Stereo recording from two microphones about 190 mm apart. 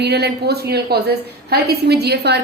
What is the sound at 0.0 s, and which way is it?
A woman's voice, 60° right (ahead or behind).